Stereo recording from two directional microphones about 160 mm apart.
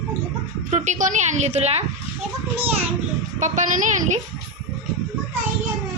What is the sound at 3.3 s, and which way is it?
Speech, 50° right (ahead or behind).